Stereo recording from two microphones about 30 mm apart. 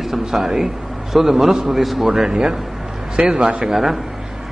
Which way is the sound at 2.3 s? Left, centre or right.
Right.